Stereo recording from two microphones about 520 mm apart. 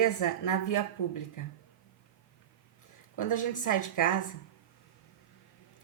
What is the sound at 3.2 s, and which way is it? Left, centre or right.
A woman's voice, left.